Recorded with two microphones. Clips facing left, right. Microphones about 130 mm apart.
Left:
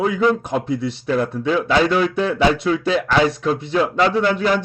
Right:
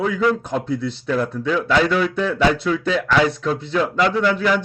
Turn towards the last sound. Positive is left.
turn(degrees=30)  # may be behind; listen again after turning